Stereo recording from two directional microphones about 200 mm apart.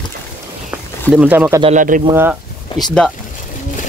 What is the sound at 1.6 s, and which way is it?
Speech, 40° right (ahead or behind).